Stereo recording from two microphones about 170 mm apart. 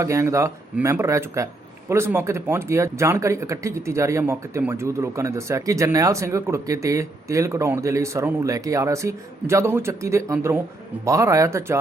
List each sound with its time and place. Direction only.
0.0 s speech: 15° right (ahead or behind)